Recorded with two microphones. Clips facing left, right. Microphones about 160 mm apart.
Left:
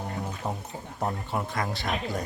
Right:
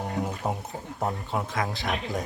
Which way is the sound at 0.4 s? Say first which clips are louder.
Right 2 dB; 15° right (ahead or behind).